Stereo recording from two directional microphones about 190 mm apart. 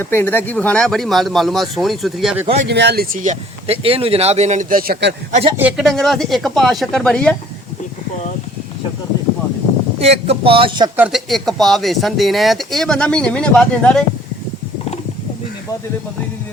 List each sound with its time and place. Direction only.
0.0 s speech: 10° left (ahead or behind)
2.6 s speech: 60° right (ahead or behind)
5.3 s speech: 30° right (ahead or behind)
5.5 s speech: 5° right (ahead or behind)
10.0 s speech: 30° right (ahead or behind)
10.9 s speech: 5° right (ahead or behind)